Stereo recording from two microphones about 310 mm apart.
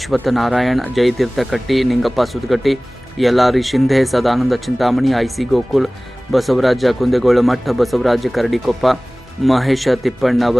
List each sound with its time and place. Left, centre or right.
0.0 s speech: centre